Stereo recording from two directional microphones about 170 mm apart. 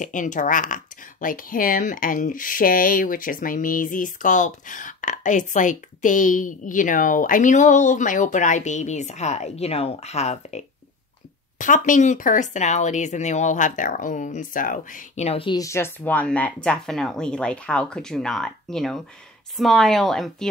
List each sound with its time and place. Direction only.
0.0 s speech: 50° left (ahead or behind)
15.5 s speech: 15° left (ahead or behind); by 20.4 s centre (ahead or behind)